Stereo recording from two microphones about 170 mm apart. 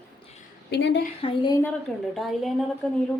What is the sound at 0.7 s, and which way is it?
Speech, 90° left.